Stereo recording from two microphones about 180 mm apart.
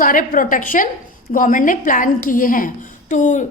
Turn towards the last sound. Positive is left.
turn(degrees=45)  # may be behind; listen again after turning